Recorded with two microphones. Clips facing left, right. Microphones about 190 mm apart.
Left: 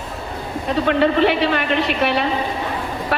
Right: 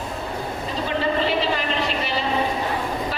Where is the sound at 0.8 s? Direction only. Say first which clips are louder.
Left 7 dB; 65° left (ahead or behind).